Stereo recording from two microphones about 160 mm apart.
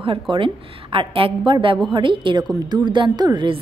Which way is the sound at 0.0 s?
35° right (ahead or behind).